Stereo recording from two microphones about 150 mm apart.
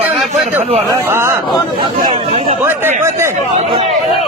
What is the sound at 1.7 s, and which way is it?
Speech, 35° right (ahead or behind).